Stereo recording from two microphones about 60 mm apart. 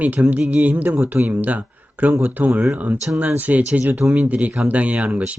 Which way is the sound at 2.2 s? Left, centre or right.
Right.